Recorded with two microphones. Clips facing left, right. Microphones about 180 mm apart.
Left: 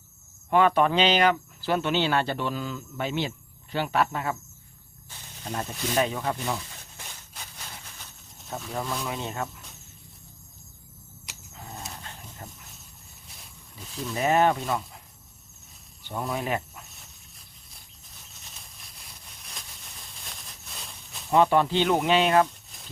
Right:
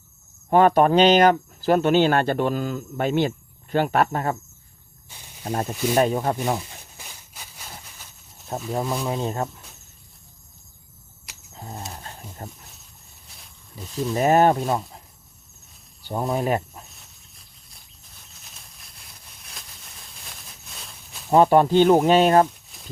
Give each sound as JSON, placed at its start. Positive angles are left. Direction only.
{"t": 0.5, "sound": "speech", "side_deg": -45}
{"t": 5.0, "sound": "snake", "side_deg": -15}
{"t": 5.5, "sound": "speech", "side_deg": -50}
{"t": 6.9, "sound": "a sound", "side_deg": -5}
{"t": 8.4, "sound": "speech", "side_deg": -40}
{"t": 11.5, "sound": "a sound", "side_deg": -30}
{"t": 12.4, "sound": "wild animals", "side_deg": -40}
{"t": 14.1, "sound": "speech", "side_deg": -45}
{"t": 16.0, "sound": "speech", "side_deg": -35}
{"t": 18.4, "sound": "a sound", "side_deg": 0}
{"t": 21.2, "sound": "speech", "side_deg": -40}